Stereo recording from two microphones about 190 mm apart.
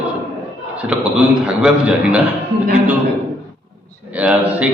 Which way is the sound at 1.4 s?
5° right (ahead or behind).